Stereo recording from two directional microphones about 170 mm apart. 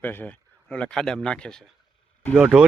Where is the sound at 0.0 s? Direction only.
10° left (ahead or behind).